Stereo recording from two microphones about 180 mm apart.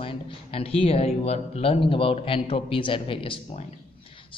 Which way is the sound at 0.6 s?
35° left (ahead or behind).